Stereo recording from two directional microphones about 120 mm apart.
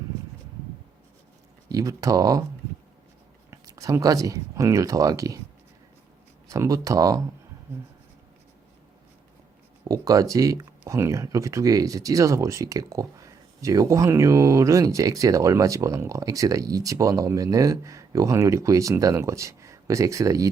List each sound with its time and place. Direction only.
1.7 s speech: 30° right (ahead or behind)
3.5 s speech: 30° right (ahead or behind)
6.5 s speech: 30° right (ahead or behind)
9.9 s speech: 30° right (ahead or behind)